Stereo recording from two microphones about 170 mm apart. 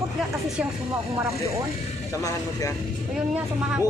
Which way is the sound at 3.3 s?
10° right (ahead or behind).